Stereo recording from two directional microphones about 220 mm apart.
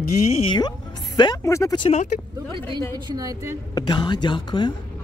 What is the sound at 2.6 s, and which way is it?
A woman's voice, 20° right (ahead or behind).